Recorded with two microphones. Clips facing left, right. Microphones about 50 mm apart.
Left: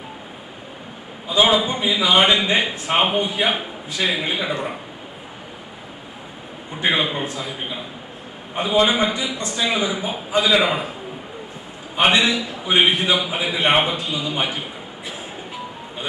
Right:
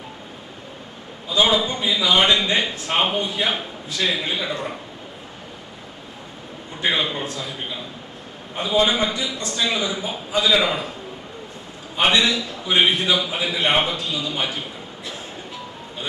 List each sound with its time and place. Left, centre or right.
1.3 s a man's voice: centre
6.8 s a man's voice: centre
11.9 s a man's voice: centre